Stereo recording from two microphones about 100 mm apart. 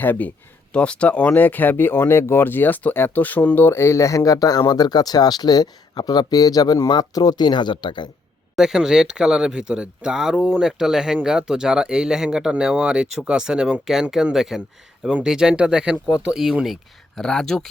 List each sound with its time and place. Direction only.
0.0 s speech: 20° left (ahead or behind); by 8.0 s 50° left (ahead or behind)
8.5 s speech: 5° right (ahead or behind)